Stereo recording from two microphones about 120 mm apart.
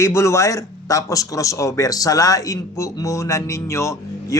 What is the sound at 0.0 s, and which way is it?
Speech, 25° left (ahead or behind).